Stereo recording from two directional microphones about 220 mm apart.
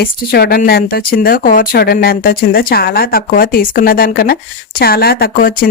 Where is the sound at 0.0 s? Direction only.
45° left (ahead or behind).